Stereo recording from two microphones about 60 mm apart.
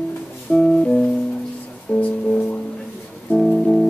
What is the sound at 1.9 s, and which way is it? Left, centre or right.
Music, left.